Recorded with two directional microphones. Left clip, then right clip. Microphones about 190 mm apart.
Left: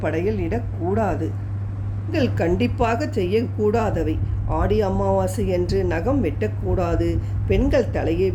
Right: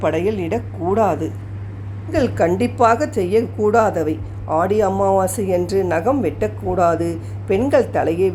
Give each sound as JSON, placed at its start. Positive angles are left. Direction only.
{"t": 0.0, "sound": "a woman's voice", "side_deg": -15}